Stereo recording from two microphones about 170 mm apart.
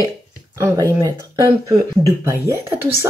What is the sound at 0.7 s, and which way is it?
Speech, 15° right (ahead or behind).